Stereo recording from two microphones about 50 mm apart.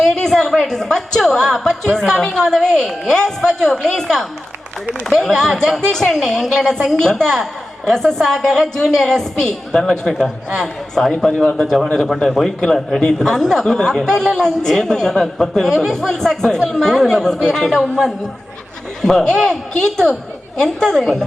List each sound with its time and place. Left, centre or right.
0.0 s a sound: centre
0.6 s a man's voice: centre
19.0 s a man's voice: centre